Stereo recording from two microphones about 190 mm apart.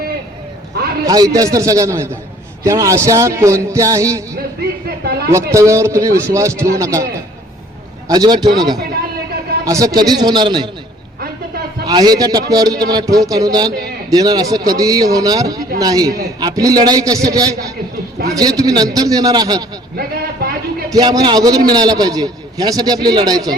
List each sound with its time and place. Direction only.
1.0 s a man's voice: 20° right (ahead or behind)
5.0 s speech: 55° right (ahead or behind)
5.3 s a man's voice: 15° right (ahead or behind)
11.9 s a man's voice: 20° right (ahead or behind)
20.0 s speech: 55° right (ahead or behind)
20.9 s a man's voice: 20° right (ahead or behind)